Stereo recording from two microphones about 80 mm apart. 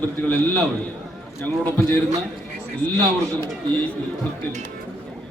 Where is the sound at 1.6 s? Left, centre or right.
Left.